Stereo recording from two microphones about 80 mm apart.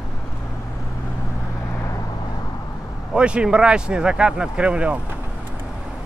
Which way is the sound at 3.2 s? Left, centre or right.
Centre.